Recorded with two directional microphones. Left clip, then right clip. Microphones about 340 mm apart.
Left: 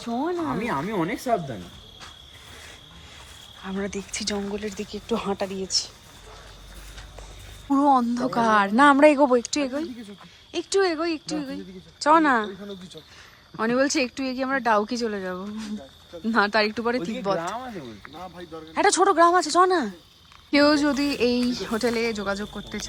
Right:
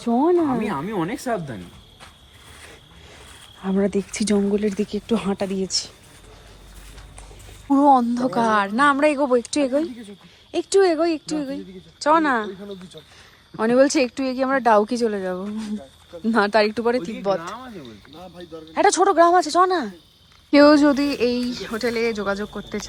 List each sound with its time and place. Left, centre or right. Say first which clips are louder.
0.0 s speech: right 8 dB; centre
0.6 s speech: right 1 dB; centre
3.6 s speech: right 9 dB; centre
7.7 s speech: right 4 dB; centre
13.6 s speech: right 6 dB; centre
17.5 s speech: left 2 dB; left
18.3 s speech: right 4 dB; centre